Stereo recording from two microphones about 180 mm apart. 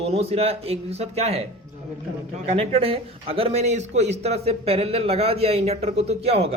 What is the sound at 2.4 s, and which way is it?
Speech, 30° right (ahead or behind).